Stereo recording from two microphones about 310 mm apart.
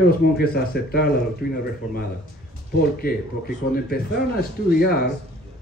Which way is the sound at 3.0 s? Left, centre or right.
Left.